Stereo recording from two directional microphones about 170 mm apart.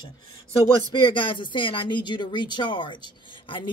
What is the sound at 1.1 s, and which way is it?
Speech, 30° left (ahead or behind).